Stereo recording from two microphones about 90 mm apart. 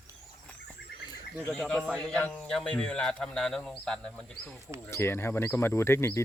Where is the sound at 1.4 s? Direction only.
10° left (ahead or behind).